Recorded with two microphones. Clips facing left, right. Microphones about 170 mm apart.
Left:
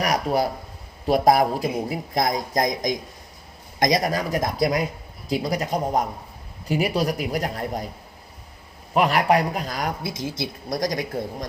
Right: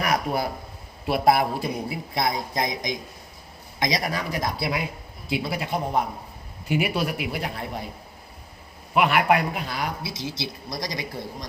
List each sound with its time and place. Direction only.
0.0 s a sound: 35° left (ahead or behind)
1.0 s a man's voice: 40° left (ahead or behind)
9.0 s a man's voice: 35° left (ahead or behind)